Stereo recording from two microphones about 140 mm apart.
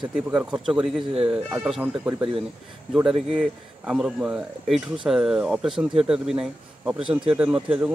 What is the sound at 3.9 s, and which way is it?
Speech, 5° right (ahead or behind).